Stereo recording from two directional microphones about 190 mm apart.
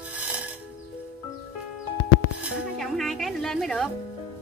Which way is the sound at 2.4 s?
Centre (ahead or behind).